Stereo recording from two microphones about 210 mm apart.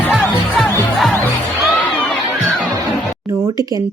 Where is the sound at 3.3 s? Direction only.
15° right (ahead or behind).